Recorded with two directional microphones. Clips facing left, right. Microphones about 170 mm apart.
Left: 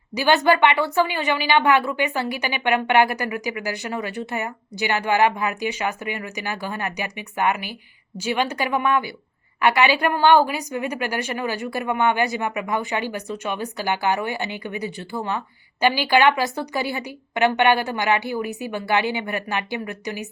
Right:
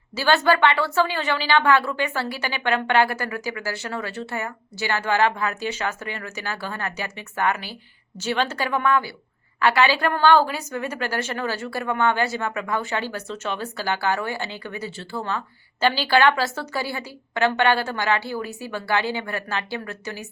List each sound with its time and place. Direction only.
0.1 s a woman's voice: 15° left (ahead or behind)